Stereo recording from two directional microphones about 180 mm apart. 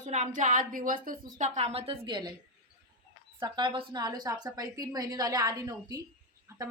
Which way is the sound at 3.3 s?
25° right (ahead or behind).